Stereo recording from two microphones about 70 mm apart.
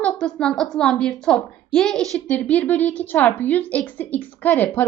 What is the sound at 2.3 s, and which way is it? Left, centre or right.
A woman's voice, left.